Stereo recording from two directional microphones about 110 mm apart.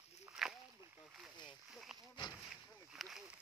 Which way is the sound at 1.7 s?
5° right (ahead or behind).